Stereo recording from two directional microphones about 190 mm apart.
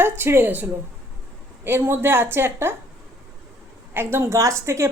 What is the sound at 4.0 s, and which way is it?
Speech, 10° right (ahead or behind).